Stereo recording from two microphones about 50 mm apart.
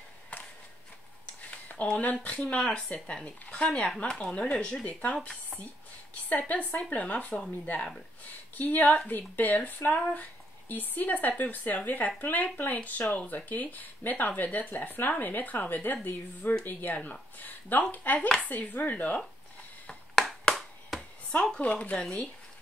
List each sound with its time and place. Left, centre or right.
1.4 s a sound: left
2.0 s speech: left
2.4 s a woman's voice: centre; by 19.1 s left
19.9 s finger snapping: centre
21.5 s a woman's voice: left
21.9 s speech: centre